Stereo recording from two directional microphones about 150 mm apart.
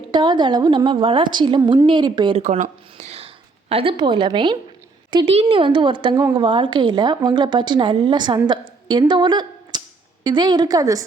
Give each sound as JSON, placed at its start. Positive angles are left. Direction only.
{"t": 0.1, "sound": "a woman's voice", "side_deg": -30}
{"t": 2.4, "sound": "a woman's voice", "side_deg": -50}